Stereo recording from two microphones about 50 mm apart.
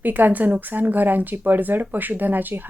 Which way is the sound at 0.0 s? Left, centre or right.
Right.